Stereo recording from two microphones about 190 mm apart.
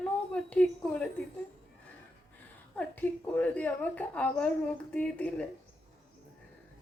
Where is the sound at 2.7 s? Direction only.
10° left (ahead or behind).